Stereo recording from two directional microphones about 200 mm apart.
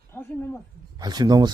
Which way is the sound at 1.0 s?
20° right (ahead or behind).